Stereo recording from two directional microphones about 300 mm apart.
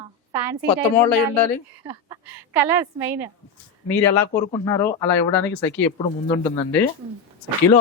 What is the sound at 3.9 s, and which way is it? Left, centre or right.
Speech, centre.